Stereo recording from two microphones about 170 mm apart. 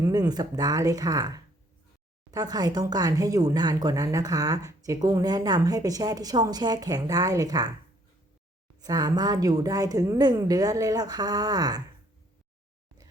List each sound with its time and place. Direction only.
0.0 s speech: 20° right (ahead or behind)
8.8 s speech: 25° right (ahead or behind)